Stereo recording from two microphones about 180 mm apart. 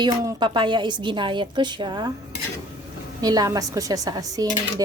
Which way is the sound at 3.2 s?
20° right (ahead or behind).